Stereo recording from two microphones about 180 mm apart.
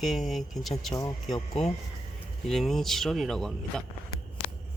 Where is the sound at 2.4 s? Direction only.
Centre (ahead or behind).